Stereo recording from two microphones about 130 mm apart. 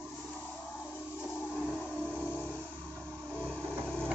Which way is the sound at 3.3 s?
10° left (ahead or behind).